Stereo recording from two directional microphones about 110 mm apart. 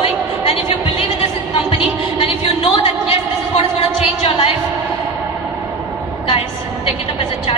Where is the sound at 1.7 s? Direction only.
60° left (ahead or behind).